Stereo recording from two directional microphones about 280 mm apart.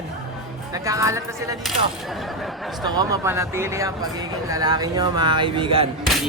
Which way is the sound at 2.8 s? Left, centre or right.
Centre.